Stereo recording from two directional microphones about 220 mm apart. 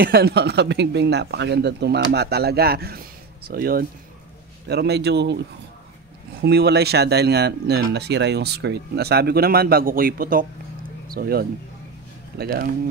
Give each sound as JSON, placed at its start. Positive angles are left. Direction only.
{"t": 0.0, "sound": "speech", "side_deg": -45}
{"t": 6.4, "sound": "speech", "side_deg": -45}